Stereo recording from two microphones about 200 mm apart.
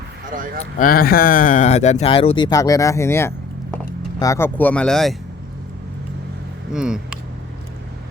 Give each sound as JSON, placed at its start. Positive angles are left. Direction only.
{"t": 0.3, "sound": "speech", "side_deg": -45}
{"t": 0.8, "sound": "speech", "side_deg": 45}
{"t": 6.7, "sound": "speech", "side_deg": -5}